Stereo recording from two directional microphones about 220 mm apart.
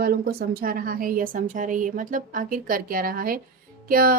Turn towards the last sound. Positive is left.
turn(degrees=-40)  # may be behind; listen again after turning